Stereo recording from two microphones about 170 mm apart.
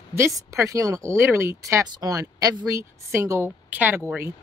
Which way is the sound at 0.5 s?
20° right (ahead or behind).